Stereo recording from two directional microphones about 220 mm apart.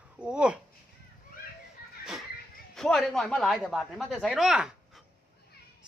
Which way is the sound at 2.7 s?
Centre (ahead or behind).